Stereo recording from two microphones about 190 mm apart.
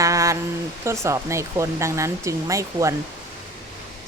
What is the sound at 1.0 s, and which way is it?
Speech, 15° right (ahead or behind).